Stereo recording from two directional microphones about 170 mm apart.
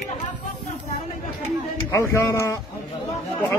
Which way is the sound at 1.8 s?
15° left (ahead or behind).